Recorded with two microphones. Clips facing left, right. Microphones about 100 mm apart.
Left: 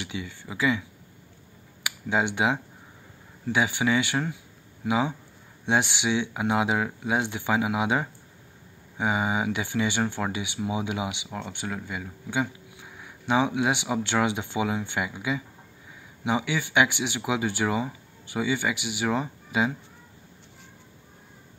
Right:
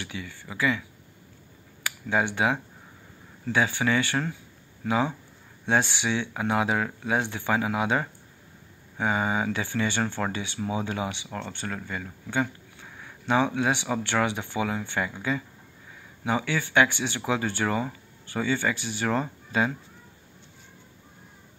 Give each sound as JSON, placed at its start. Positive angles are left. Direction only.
{"t": 0.0, "sound": "speech", "side_deg": 20}